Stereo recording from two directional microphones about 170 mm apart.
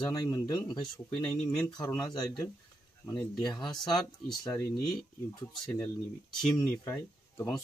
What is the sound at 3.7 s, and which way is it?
Speech, 5° left (ahead or behind).